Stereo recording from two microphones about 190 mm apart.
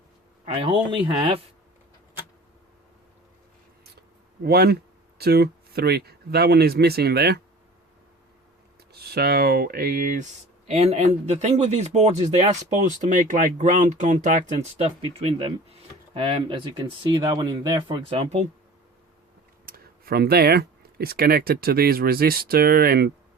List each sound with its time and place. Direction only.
0.4 s a man's voice: 30° right (ahead or behind)
4.4 s speech: 55° right (ahead or behind)
8.9 s speech: 55° right (ahead or behind)
10.8 s speech: 35° right (ahead or behind)
19.6 s speech: 50° right (ahead or behind)